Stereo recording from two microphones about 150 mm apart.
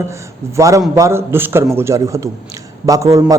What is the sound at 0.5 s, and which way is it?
A man's voice, 20° right (ahead or behind).